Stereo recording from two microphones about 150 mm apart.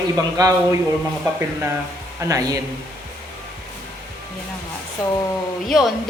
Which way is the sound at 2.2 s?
20° right (ahead or behind).